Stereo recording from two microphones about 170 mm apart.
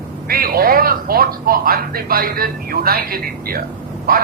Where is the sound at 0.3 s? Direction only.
60° right (ahead or behind).